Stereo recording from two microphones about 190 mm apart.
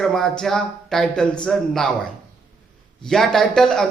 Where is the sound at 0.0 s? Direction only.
Centre (ahead or behind).